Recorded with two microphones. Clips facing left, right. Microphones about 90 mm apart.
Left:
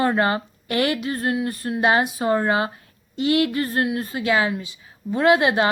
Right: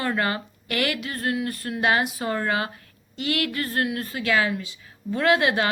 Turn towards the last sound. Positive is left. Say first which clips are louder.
# left 4 dB
turn(degrees=25)  # may be behind; listen again after turning